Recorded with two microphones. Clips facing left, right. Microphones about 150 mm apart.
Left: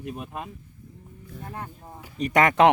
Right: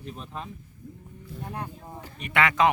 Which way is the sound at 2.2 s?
45° left (ahead or behind).